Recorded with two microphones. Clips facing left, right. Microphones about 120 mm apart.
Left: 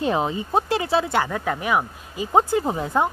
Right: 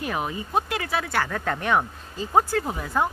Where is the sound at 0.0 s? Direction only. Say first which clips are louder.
Left 6 dB; 25° left (ahead or behind); by 2.2 s 5° left (ahead or behind).